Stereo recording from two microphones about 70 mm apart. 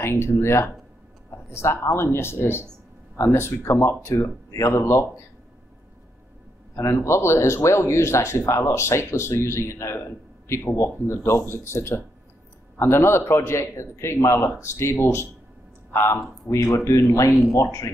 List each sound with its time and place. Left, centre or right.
0.0 s speech: left
6.7 s speech: left